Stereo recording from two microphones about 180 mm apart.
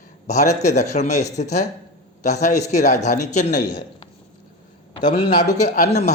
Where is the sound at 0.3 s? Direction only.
40° left (ahead or behind).